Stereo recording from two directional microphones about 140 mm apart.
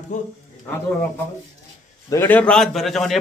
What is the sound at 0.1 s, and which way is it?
Speech, 60° left (ahead or behind).